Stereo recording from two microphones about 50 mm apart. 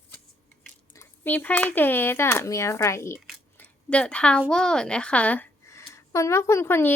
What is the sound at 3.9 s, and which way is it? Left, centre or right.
A woman's voice, left.